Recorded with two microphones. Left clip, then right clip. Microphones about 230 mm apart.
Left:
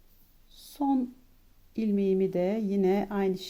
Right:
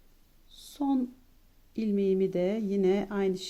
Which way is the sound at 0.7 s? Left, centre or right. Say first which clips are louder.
Left 2 dB; centre.